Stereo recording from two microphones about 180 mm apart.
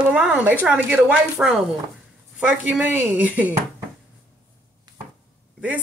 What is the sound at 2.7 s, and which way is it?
Speech, 5° right (ahead or behind).